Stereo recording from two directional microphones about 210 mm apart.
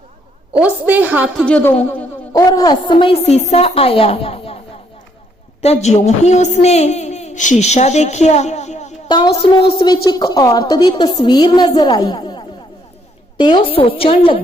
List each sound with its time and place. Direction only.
0.5 s a woman's voice: 5° right (ahead or behind)
1.5 s a woman's voice: 5° left (ahead or behind); by 4.6 s 25° left (ahead or behind)
5.6 s a woman's voice: 30° left (ahead or behind)
9.0 s a woman's voice: 20° left (ahead or behind)